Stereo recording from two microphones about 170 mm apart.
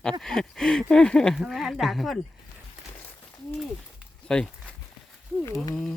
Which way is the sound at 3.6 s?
Centre (ahead or behind).